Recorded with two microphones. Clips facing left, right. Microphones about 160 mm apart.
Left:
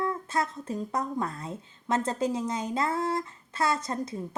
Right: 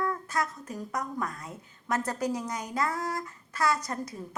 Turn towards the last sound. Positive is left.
turn(degrees=25)  # may be behind; listen again after turning